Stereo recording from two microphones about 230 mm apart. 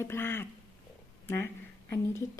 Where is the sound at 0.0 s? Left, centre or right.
Centre.